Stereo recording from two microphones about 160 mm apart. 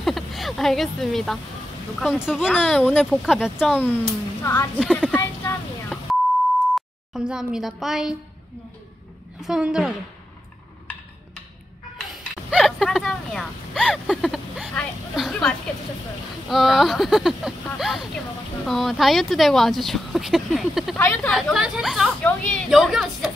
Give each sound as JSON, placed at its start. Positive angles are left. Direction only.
{"t": 0.0, "sound": "speech", "side_deg": 0}
{"t": 3.7, "sound": "a woman's voice", "side_deg": 10}
{"t": 5.1, "sound": "a sound", "side_deg": 15}
{"t": 6.7, "sound": "speech", "side_deg": -5}
{"t": 9.4, "sound": "speech", "side_deg": -5}
{"t": 12.4, "sound": "a woman's voice", "side_deg": 0}
{"t": 22.7, "sound": "speech", "side_deg": 0}